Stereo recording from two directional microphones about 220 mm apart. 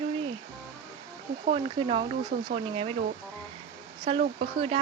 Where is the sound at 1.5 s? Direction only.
25° right (ahead or behind).